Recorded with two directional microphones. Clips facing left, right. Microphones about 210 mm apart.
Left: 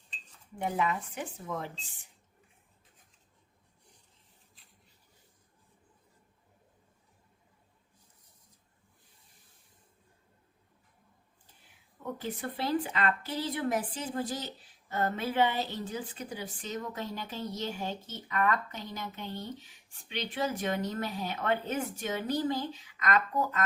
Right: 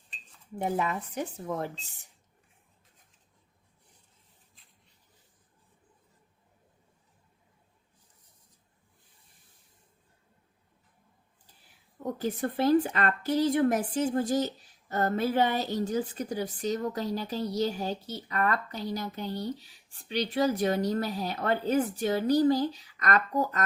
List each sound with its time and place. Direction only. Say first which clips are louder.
0.6 s a woman's voice: right 1 dB; 40° right (ahead or behind)
12.1 s a woman's voice: right 7 dB; 40° right (ahead or behind)